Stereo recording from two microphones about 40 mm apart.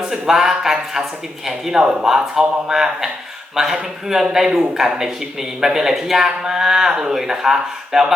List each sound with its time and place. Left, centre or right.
0.1 s speech: centre
1.8 s speech: right